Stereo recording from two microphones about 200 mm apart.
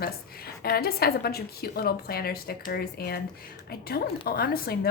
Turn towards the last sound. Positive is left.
turn(degrees=50)  # may be behind; listen again after turning